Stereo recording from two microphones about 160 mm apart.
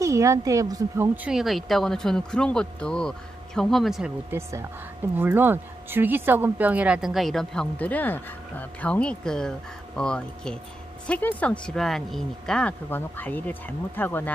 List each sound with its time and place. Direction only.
0.0 s speech: 20° right (ahead or behind); by 4.1 s centre (ahead or behind)
4.3 s speech: 15° right (ahead or behind); by 14.3 s 10° left (ahead or behind)